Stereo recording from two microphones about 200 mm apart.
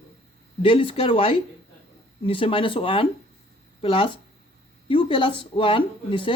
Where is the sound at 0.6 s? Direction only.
25° left (ahead or behind).